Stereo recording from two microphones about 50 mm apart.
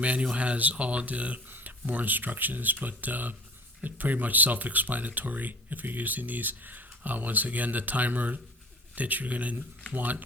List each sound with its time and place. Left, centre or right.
0.0 s speech: right
1.5 s speech: right